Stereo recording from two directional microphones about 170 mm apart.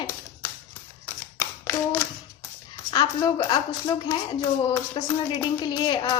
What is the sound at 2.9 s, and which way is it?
A woman's voice, 25° left (ahead or behind).